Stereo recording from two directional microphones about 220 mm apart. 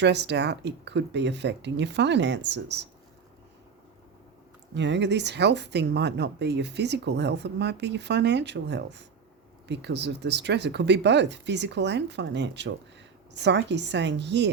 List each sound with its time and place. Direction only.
0.0 s speech: 50° right (ahead or behind)
4.7 s speech: 55° right (ahead or behind)